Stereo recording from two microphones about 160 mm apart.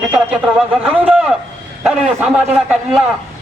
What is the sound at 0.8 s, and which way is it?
A man's voice, 5° right (ahead or behind).